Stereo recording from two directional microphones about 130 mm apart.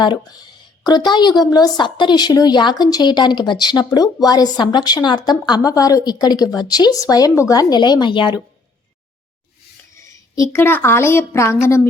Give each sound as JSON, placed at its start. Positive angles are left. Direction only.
{"t": 0.0, "sound": "speech", "side_deg": 30}
{"t": 9.9, "sound": "a woman's voice", "side_deg": 25}